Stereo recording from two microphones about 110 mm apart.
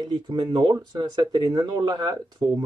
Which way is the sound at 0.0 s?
40° right (ahead or behind).